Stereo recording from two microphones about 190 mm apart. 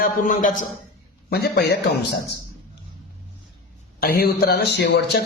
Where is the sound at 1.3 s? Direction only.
60° left (ahead or behind).